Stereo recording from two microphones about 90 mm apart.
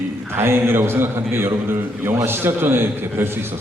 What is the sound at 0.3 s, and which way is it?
A man's voice, 25° right (ahead or behind).